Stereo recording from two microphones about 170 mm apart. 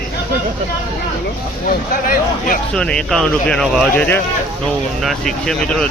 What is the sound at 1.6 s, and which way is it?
Speech, 55° left (ahead or behind).